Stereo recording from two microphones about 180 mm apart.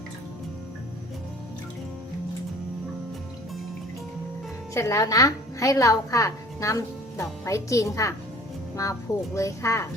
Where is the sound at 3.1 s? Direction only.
Centre (ahead or behind).